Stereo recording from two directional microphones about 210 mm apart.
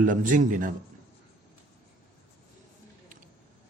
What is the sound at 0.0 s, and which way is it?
Speech, 40° right (ahead or behind).